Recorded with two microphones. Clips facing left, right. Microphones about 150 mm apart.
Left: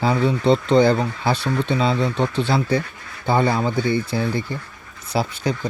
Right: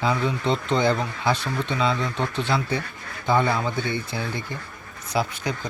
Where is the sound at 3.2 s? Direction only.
35° left (ahead or behind).